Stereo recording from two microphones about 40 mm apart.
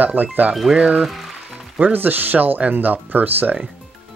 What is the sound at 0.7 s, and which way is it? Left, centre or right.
Speech, right.